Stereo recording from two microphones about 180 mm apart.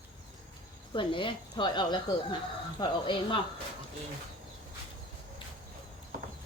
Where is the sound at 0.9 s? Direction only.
30° left (ahead or behind).